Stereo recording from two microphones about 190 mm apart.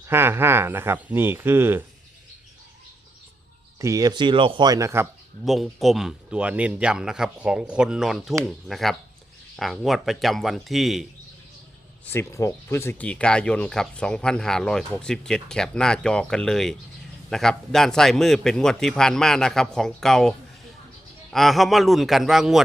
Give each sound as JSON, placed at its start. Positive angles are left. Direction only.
{"t": 0.1, "sound": "speech", "side_deg": -10}
{"t": 3.8, "sound": "speech", "side_deg": -15}
{"t": 5.5, "sound": "speech", "side_deg": 0}
{"t": 12.1, "sound": "speech", "side_deg": 15}